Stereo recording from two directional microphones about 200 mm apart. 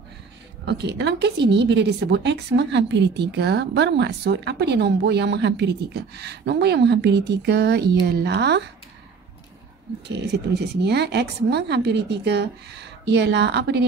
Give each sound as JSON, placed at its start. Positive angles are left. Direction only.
{"t": 0.7, "sound": "a woman's voice", "side_deg": -60}
{"t": 10.0, "sound": "a woman's voice", "side_deg": -60}